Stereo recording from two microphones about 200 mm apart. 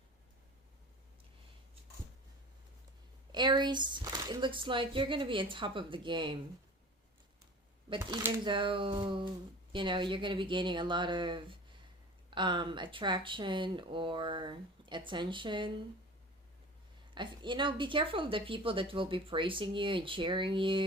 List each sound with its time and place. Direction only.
3.3 s a woman's voice: 20° right (ahead or behind)
7.9 s a woman's voice: 20° right (ahead or behind)
17.2 s a woman's voice: 25° right (ahead or behind)